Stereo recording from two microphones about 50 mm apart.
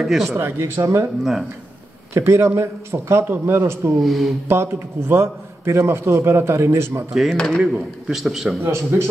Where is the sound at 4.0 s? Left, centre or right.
Centre.